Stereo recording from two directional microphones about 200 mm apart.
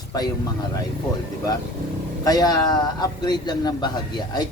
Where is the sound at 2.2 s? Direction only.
20° left (ahead or behind).